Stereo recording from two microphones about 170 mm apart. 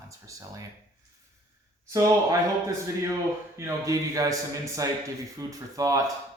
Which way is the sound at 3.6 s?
20° right (ahead or behind).